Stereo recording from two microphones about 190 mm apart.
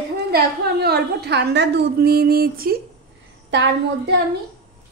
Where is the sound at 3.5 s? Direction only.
65° right (ahead or behind).